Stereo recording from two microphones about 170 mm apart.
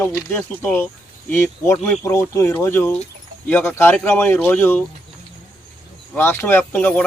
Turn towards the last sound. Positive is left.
turn(degrees=10)  # may be behind; listen again after turning